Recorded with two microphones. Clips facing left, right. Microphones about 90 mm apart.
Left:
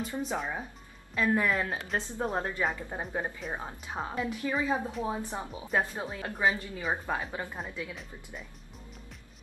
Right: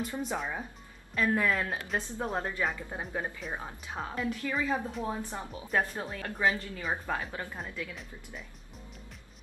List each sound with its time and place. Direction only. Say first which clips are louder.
0.0 s a woman's voice: left 1 dB; 20° left (ahead or behind)
0.4 s speech: left 1 dB; 5° left (ahead or behind)
2.0 s a woman's voice: left 2 dB; 20° left (ahead or behind)
2.6 s a woman's voice: left 1 dB; 5° left (ahead or behind)
7.9 s speech: left 1 dB; centre (ahead or behind)